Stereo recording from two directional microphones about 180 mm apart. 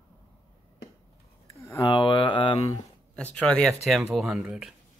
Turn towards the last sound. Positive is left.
turn(degrees=-5)  # may be behind; listen again after turning